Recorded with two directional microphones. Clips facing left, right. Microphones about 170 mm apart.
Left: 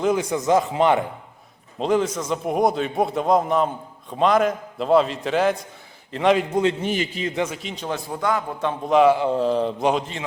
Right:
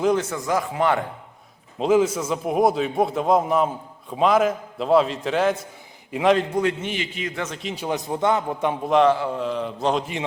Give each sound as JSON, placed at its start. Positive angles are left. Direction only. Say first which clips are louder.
{"t": 0.2, "sound": "speech", "louder": "left 4 dB", "side_deg": 15}
{"t": 1.8, "sound": "a man's voice", "louder": "right 2 dB", "side_deg": -5}
{"t": 6.5, "sound": "speech", "louder": "left 2 dB", "side_deg": 25}
{"t": 6.8, "sound": "a man's voice", "louder": "left 4 dB", "side_deg": 40}
{"t": 7.3, "sound": "speech", "louder": "left 8 dB", "side_deg": 10}
{"t": 7.6, "sound": "a man's voice", "louder": "right 2 dB", "side_deg": 0}
{"t": 7.9, "sound": "a man's voice", "louder": "right 2 dB", "side_deg": -20}
{"t": 8.9, "sound": "a man's voice", "louder": "left 2 dB", "side_deg": 5}
{"t": 9.1, "sound": "speech", "louder": "left 5 dB", "side_deg": 20}
{"t": 9.4, "sound": "a man's voice", "louder": "left 5 dB", "side_deg": 35}